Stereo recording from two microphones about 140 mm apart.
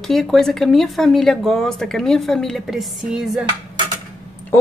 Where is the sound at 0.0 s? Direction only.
Centre (ahead or behind).